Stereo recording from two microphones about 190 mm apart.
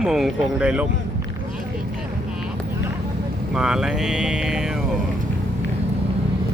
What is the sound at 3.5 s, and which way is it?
Speech, 5° right (ahead or behind).